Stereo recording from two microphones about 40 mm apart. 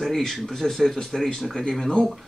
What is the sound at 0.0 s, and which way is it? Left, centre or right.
Speech, centre.